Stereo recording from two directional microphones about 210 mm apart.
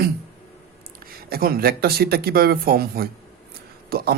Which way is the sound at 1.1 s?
45° right (ahead or behind).